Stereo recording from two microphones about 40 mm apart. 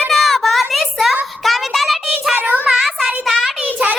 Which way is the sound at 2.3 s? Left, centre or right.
Right.